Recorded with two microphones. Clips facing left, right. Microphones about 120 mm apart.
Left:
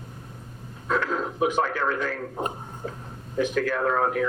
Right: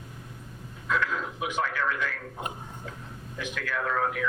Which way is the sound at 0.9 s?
40° left (ahead or behind).